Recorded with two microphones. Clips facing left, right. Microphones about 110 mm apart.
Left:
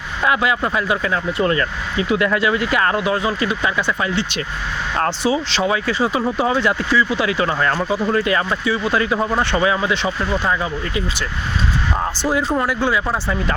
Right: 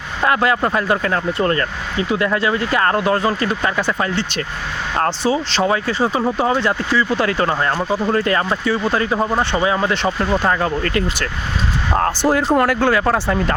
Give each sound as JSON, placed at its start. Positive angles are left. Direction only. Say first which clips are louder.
{"t": 0.2, "sound": "speech", "louder": "right 2 dB", "side_deg": -45}
{"t": 8.2, "sound": "speech", "louder": "right 1 dB", "side_deg": -40}
{"t": 9.1, "sound": "speech", "louder": "right 1 dB", "side_deg": -15}
{"t": 9.6, "sound": "speech", "louder": "right 1 dB", "side_deg": -35}
{"t": 10.4, "sound": "speech", "louder": "right 3 dB", "side_deg": -55}